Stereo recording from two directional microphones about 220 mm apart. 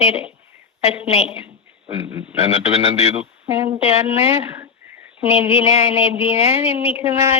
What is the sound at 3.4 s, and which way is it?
Speech, 10° right (ahead or behind).